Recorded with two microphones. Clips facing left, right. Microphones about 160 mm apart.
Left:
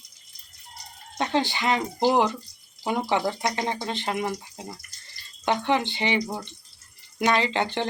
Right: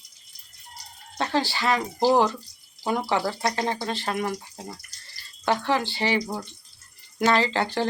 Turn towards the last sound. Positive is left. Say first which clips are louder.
# right 1 dB
turn(degrees=20)  # may be behind; listen again after turning